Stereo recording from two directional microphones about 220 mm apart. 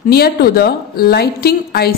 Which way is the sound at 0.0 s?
45° left (ahead or behind).